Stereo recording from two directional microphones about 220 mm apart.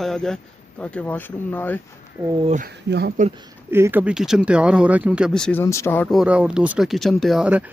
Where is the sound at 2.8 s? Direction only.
45° right (ahead or behind).